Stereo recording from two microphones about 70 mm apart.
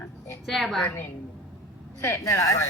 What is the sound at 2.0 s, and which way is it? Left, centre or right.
Speech, left.